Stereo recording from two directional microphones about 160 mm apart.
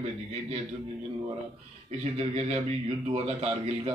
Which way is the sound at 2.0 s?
40° right (ahead or behind).